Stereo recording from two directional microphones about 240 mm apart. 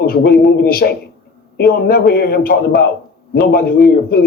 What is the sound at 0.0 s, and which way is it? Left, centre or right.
Speech, left.